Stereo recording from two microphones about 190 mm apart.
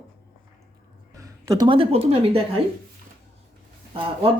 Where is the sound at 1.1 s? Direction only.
15° right (ahead or behind).